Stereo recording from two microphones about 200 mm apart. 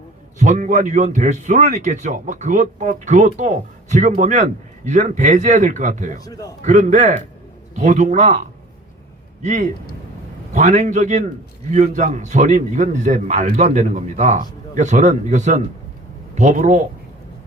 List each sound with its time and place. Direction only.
0.3 s a man's voice: 40° right (ahead or behind)
6.2 s a man's voice: 15° left (ahead or behind)
6.7 s a man's voice: 35° right (ahead or behind)